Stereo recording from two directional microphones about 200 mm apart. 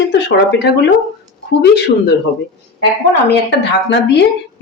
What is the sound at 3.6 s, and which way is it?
Speech, 60° left (ahead or behind).